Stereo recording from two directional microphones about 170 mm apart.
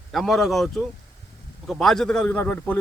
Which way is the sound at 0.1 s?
Centre (ahead or behind).